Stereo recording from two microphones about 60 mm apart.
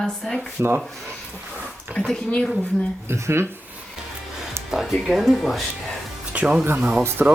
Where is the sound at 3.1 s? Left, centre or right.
Right.